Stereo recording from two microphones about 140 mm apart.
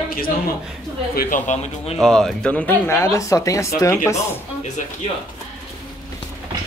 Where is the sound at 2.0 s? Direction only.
5° left (ahead or behind); by 4.4 s 20° left (ahead or behind).